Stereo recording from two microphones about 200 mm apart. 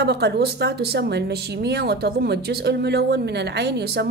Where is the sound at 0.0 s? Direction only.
55° right (ahead or behind).